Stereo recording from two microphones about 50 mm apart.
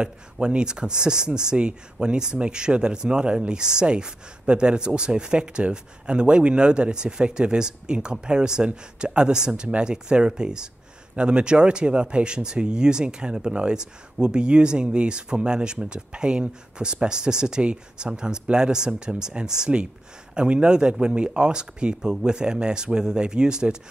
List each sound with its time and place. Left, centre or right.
0.0 s speech: centre